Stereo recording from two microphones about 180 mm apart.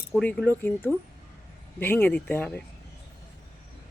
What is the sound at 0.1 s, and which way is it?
A woman's voice, 5° left (ahead or behind).